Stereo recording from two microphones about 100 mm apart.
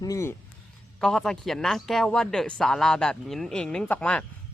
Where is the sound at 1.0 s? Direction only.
5° left (ahead or behind).